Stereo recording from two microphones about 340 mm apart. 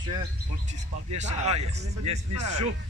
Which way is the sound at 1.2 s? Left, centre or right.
Centre.